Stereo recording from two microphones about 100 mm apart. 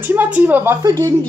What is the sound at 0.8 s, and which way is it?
Speech, 35° right (ahead or behind).